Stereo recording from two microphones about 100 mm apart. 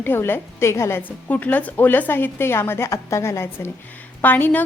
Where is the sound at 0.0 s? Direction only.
25° left (ahead or behind).